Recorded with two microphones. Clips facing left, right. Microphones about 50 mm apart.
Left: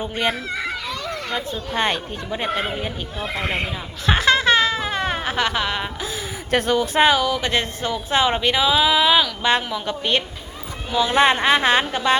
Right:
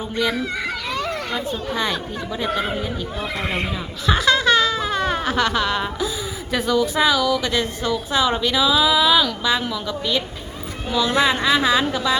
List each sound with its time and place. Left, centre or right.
0.3 s a child's voice: centre
0.9 s a sound: right
1.3 s a woman's voice: left
3.2 s speech: centre
4.0 s a sound: left
6.7 s speech: left
7.2 s speech: left
9.4 s a woman's voice: left
11.9 s speech: left